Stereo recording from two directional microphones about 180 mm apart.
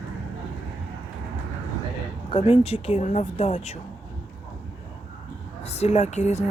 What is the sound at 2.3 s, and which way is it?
Speech, 30° left (ahead or behind).